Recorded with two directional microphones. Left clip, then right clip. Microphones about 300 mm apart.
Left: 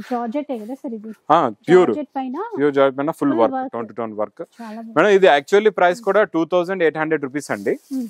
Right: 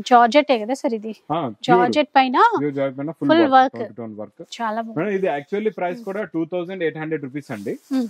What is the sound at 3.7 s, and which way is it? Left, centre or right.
Speech, centre.